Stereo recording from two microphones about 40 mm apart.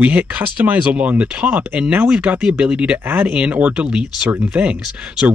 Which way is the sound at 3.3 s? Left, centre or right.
Right.